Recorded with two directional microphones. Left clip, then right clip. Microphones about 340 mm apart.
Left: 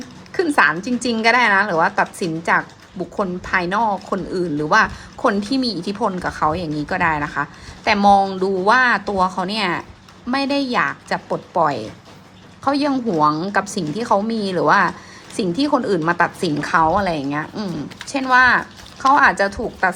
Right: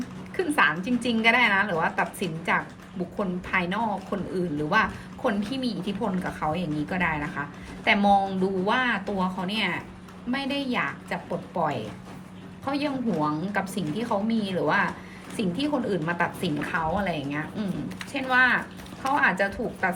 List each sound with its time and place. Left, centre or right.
0.3 s a woman's voice: centre